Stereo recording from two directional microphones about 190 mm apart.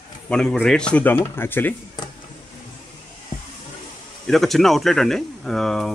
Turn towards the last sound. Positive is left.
turn(degrees=0)  # may be behind; listen again after turning